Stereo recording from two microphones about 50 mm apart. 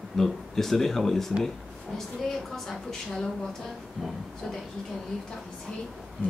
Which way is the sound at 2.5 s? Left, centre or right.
Centre.